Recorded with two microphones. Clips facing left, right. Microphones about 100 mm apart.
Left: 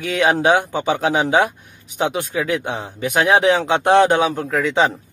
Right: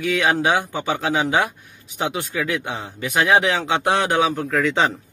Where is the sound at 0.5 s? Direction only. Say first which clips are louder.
Left 4 dB; 20° left (ahead or behind).